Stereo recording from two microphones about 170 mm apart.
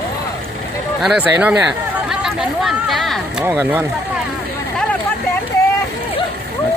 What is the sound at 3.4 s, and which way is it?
Speech, 10° right (ahead or behind).